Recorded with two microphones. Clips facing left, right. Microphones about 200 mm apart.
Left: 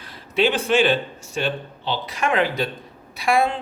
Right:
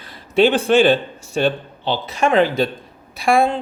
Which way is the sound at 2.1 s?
30° right (ahead or behind).